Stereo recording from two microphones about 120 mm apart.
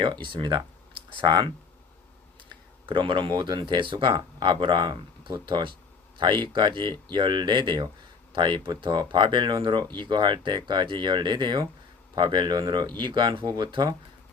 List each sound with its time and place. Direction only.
0.0 s speech: 40° right (ahead or behind)
2.9 s speech: 45° right (ahead or behind)